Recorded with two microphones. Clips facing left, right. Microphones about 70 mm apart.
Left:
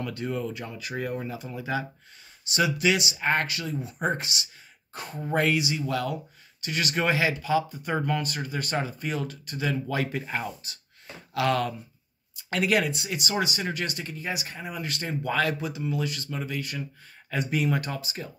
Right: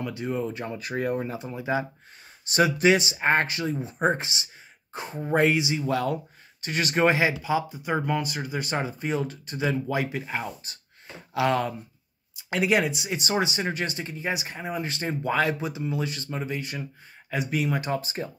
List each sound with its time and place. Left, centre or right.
0.0 s speech: centre
0.6 s speech: right
1.5 s speech: right
2.5 s speech: right; by 10.1 s centre
10.1 s speech: centre
11.3 s speech: right
17.3 s speech: centre
17.7 s speech: right
18.0 s speech: right